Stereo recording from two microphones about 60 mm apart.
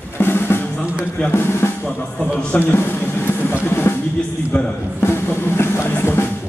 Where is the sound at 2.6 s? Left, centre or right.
Left.